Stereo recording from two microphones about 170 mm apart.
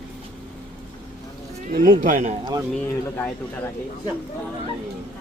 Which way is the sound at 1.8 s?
50° right (ahead or behind).